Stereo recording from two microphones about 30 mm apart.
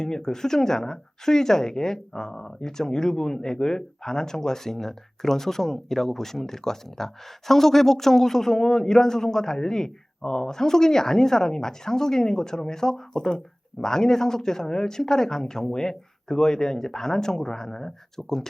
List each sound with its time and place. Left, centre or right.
0.0 s a woman's voice: left